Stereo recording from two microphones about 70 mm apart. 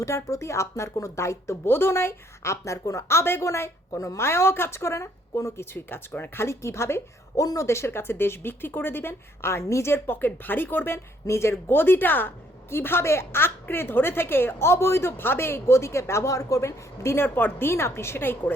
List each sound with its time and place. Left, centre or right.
0.0 s speech: left
4.3 s a woman's voice: left
5.7 s a woman's voice: left
7.4 s a woman's voice: left